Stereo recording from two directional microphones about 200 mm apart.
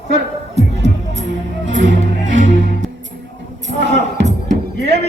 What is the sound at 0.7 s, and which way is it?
Music, 65° right (ahead or behind).